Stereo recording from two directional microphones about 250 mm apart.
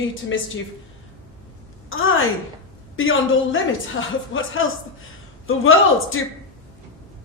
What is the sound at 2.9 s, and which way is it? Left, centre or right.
Speech, left.